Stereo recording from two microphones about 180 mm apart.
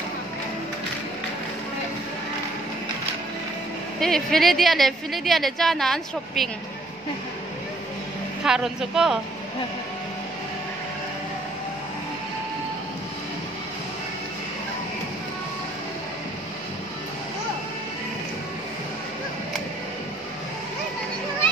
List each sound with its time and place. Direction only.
4.0 s speech: centre (ahead or behind)
8.5 s speech: 5° right (ahead or behind)